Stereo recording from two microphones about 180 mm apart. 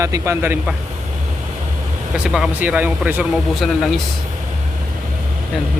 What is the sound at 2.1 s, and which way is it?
Speech, 5° right (ahead or behind).